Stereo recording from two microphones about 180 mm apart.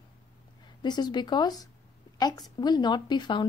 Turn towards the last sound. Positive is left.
turn(degrees=25)  # may be behind; listen again after turning